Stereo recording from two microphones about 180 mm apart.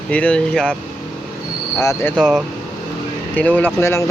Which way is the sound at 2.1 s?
10° right (ahead or behind).